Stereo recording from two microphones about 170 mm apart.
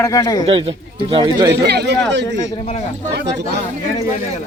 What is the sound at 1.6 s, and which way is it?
Speech, 75° right (ahead or behind).